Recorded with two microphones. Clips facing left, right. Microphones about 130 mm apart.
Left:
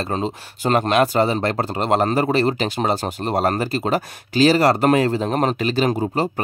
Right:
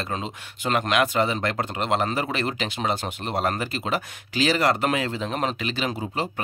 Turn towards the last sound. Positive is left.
turn(degrees=40)  # may be behind; listen again after turning